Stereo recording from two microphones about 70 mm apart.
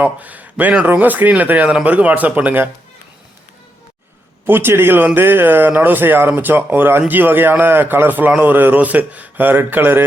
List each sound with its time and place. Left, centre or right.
0.0 s speech: right
4.4 s speech: right